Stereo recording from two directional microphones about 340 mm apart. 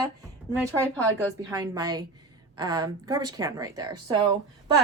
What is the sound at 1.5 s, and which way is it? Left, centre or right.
A woman's voice, centre.